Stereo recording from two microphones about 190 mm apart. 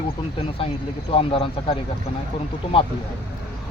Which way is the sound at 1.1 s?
30° left (ahead or behind).